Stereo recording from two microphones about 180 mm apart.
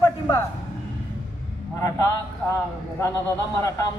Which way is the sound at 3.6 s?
20° left (ahead or behind).